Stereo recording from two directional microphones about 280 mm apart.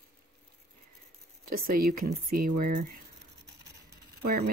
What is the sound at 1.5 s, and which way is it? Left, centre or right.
Speech, right.